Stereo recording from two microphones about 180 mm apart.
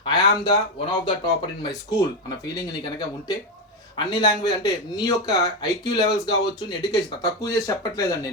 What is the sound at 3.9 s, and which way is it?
Speech, 25° left (ahead or behind).